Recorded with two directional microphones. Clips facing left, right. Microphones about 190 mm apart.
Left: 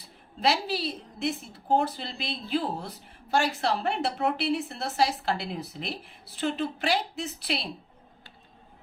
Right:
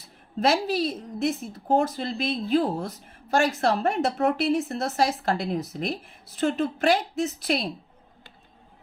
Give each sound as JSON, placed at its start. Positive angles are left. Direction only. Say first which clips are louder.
{"t": 0.3, "sound": "a woman's voice", "louder": "right 4 dB", "side_deg": -45}